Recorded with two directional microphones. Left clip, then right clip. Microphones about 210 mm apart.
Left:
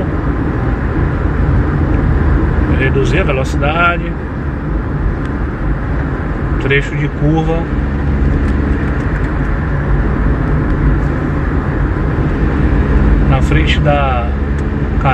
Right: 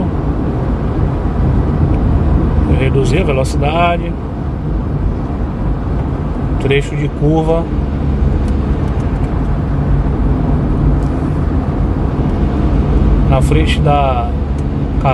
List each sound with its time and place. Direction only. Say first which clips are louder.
3.1 s speech: even; 30° right (ahead or behind)
6.7 s speech: left 1 dB; 30° right (ahead or behind)
13.3 s speech: right 1 dB; 30° right (ahead or behind)